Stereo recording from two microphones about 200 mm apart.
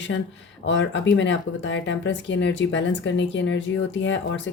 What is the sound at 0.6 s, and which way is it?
Speech, 65° left (ahead or behind).